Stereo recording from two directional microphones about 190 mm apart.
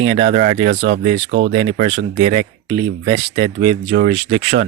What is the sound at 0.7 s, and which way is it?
Speech, 55° right (ahead or behind).